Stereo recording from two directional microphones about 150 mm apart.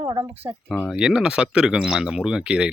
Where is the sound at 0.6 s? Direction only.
10° left (ahead or behind).